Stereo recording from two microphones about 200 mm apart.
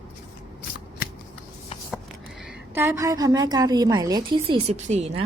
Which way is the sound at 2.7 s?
15° right (ahead or behind).